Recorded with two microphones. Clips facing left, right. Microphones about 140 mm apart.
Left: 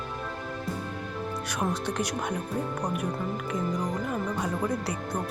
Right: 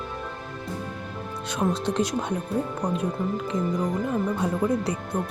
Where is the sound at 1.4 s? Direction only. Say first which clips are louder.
Right 6 dB; 25° right (ahead or behind).